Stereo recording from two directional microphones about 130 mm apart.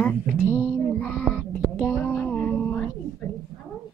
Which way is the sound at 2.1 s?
15° left (ahead or behind).